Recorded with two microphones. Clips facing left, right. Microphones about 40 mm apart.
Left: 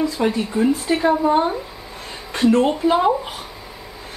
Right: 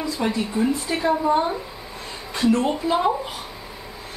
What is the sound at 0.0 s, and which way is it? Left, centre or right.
Speech, centre.